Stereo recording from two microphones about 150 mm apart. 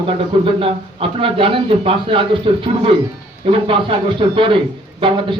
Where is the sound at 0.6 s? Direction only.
35° right (ahead or behind).